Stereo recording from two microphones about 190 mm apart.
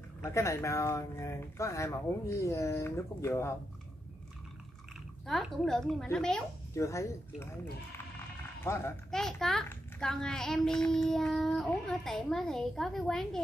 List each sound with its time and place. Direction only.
0.2 s speech: 15° left (ahead or behind)
5.2 s a child's voice: centre (ahead or behind)
6.7 s speech: 15° left (ahead or behind)
8.6 s speech: 15° left (ahead or behind)
9.1 s a child's voice: centre (ahead or behind)